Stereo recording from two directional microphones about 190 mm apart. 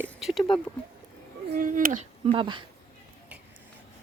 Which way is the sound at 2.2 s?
25° right (ahead or behind).